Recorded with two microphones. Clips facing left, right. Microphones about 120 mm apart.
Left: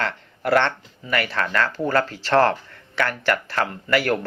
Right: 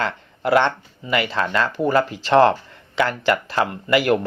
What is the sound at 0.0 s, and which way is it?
Speech, 15° right (ahead or behind).